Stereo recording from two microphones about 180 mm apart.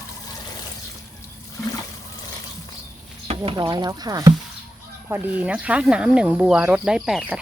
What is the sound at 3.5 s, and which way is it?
Speech, 25° right (ahead or behind).